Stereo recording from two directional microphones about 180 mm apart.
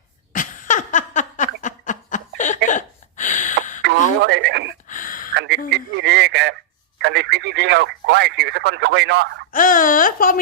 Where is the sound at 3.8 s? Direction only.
75° right (ahead or behind).